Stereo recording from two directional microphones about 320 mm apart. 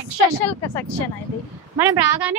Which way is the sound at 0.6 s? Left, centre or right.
Centre.